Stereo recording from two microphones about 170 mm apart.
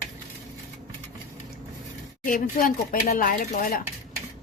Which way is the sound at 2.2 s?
55° left (ahead or behind).